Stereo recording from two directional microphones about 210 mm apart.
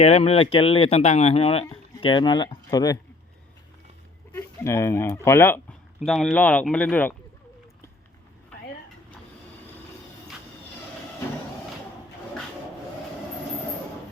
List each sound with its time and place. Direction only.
0.0 s speech: 30° left (ahead or behind)
4.3 s speech: 10° left (ahead or behind)
6.1 s speech: centre (ahead or behind)